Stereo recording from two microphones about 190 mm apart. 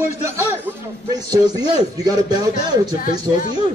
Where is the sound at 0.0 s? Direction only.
15° right (ahead or behind).